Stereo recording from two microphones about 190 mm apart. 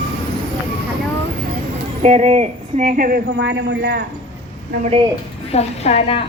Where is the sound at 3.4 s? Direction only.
65° right (ahead or behind).